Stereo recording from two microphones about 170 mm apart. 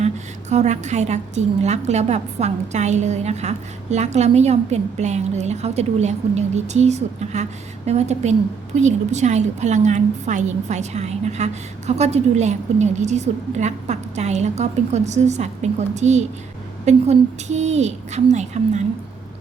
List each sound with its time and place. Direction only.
0.5 s a woman's voice: 40° right (ahead or behind)